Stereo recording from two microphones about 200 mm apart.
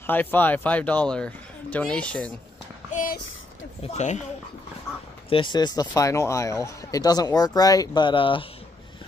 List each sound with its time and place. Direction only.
0.0 s speech: 10° left (ahead or behind)
2.9 s a sound: 40° left (ahead or behind)
3.8 s speech: 35° left (ahead or behind)
5.3 s speech: 25° left (ahead or behind)